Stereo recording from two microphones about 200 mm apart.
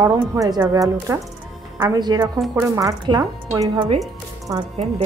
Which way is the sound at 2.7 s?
15° right (ahead or behind).